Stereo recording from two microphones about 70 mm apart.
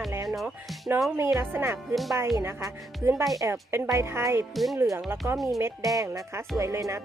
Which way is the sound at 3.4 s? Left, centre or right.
Right.